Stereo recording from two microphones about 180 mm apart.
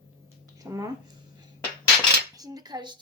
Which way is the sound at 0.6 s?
20° right (ahead or behind).